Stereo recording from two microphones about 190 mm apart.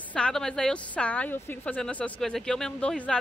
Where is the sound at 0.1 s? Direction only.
5° left (ahead or behind).